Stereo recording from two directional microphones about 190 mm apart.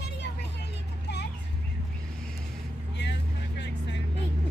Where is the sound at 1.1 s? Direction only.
65° left (ahead or behind).